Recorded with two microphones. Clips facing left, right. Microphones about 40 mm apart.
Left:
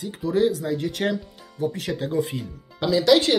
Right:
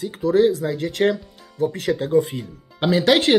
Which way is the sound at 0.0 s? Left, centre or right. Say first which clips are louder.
Right 5 dB; right.